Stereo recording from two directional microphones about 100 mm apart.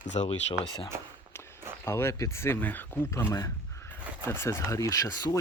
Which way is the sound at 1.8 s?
25° left (ahead or behind).